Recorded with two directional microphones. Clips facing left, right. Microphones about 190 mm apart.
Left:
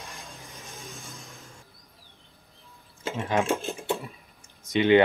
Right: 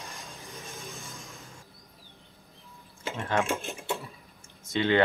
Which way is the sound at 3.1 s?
15° left (ahead or behind).